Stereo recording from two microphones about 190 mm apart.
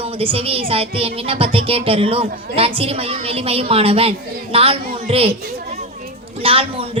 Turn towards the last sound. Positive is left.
turn(degrees=-30)  # may be behind; listen again after turning